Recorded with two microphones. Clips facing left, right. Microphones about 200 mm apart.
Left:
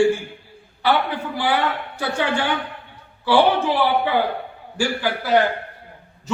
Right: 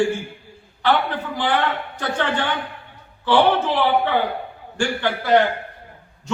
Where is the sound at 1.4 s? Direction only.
10° left (ahead or behind).